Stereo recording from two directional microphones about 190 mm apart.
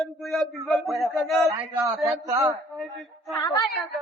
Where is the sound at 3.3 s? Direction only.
15° left (ahead or behind).